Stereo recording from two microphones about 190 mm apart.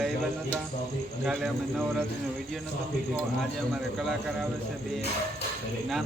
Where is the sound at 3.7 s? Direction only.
Centre (ahead or behind).